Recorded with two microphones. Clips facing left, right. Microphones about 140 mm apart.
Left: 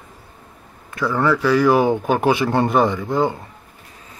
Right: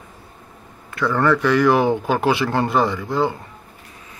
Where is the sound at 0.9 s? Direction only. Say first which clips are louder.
Right 1 dB; 10° left (ahead or behind).